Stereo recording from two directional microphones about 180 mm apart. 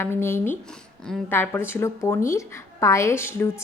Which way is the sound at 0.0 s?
15° left (ahead or behind).